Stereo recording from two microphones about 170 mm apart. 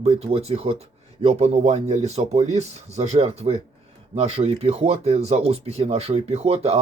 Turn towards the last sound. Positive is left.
turn(degrees=-35)  # may be behind; listen again after turning